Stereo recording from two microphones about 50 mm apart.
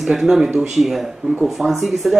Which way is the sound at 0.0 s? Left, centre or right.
Centre.